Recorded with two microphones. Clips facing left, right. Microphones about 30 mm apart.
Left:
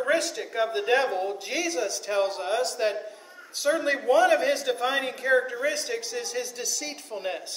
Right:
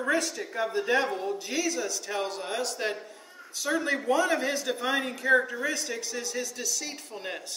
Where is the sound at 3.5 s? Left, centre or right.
Centre.